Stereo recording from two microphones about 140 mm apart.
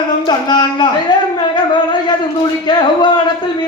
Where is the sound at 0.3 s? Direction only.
30° left (ahead or behind).